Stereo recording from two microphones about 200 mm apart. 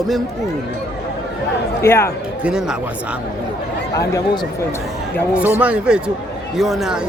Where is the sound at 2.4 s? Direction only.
5° right (ahead or behind).